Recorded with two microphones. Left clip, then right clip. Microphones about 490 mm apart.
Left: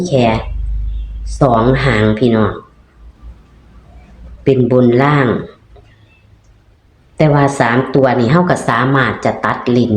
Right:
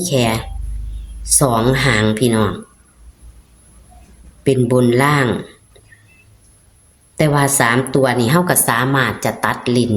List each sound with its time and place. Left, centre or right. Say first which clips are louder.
0.0 s speech: left 4 dB; right
4.4 s speech: left 4 dB; right
7.2 s a woman's voice: left 3 dB; right